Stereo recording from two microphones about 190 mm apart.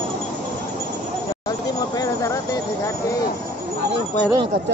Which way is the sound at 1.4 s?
20° left (ahead or behind).